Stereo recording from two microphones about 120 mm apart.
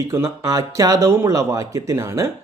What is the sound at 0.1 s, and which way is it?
Speech, 25° right (ahead or behind).